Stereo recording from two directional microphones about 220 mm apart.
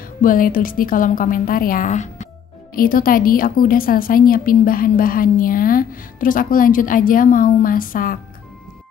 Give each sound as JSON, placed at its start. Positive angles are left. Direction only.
{"t": 0.2, "sound": "a woman's voice", "side_deg": 40}